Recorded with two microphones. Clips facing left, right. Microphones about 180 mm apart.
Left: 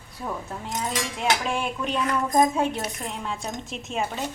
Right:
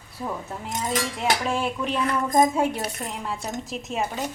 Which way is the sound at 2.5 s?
10° right (ahead or behind).